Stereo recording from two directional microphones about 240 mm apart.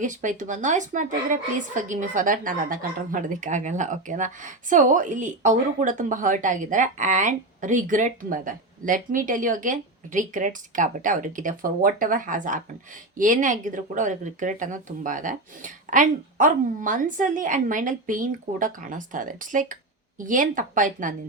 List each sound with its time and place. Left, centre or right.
0.0 s speech: right